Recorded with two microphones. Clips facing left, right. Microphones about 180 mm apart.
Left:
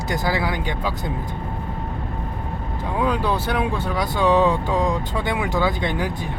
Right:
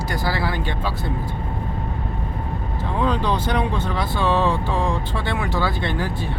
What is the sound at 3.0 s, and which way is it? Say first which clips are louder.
Speech: even; 10° left (ahead or behind).